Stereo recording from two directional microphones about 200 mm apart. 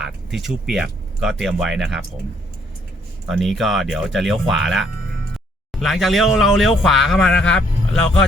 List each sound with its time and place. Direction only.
0.0 s speech: centre (ahead or behind)
3.2 s speech: centre (ahead or behind)